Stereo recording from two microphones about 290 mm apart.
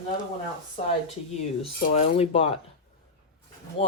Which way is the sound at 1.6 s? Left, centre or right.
Centre.